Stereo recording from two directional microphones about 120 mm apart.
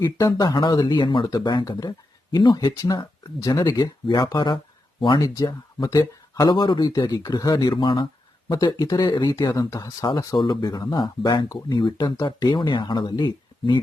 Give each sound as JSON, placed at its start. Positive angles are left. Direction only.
{"t": 0.0, "sound": "speech", "side_deg": 25}
{"t": 5.2, "sound": "speech", "side_deg": 30}